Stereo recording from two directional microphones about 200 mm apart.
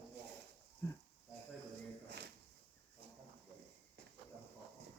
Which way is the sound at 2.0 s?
60° right (ahead or behind).